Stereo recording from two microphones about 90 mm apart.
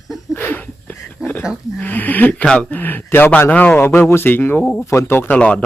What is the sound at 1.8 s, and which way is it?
A man's voice, 20° left (ahead or behind).